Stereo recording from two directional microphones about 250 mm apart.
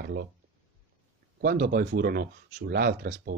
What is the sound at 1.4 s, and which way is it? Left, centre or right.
Speech, right.